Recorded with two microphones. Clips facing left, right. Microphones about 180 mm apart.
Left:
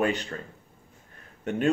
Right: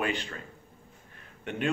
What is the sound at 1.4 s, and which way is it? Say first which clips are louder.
Speech: left 5 dB; 40° left (ahead or behind).